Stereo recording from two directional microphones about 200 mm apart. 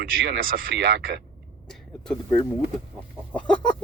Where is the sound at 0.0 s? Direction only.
45° right (ahead or behind).